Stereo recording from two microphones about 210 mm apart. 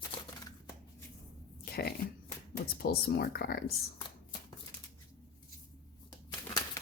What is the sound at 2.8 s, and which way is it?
Speech, 50° left (ahead or behind).